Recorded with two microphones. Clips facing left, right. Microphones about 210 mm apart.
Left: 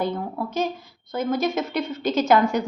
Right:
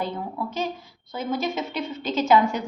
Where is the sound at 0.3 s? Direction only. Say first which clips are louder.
Left 3 dB; 45° left (ahead or behind).